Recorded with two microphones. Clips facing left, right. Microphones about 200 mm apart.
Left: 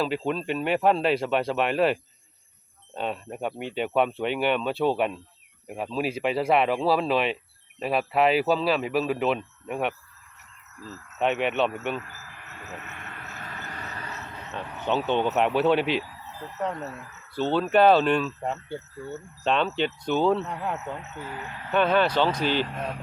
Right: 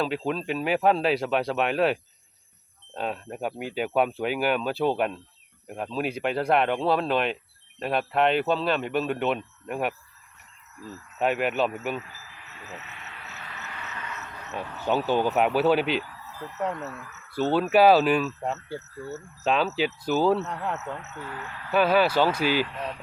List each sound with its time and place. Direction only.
0.0 s speech: centre (ahead or behind)
12.1 s vehicle: 50° left (ahead or behind); by 14.3 s 35° left (ahead or behind)
14.5 s speech: 5° right (ahead or behind)
16.7 s speech: 30° left (ahead or behind)
17.5 s speech: 5° right (ahead or behind); by 21.1 s 10° left (ahead or behind)
21.2 s speech: 20° left (ahead or behind)
21.7 s speech: 5° right (ahead or behind)
22.6 s speech: 45° left (ahead or behind)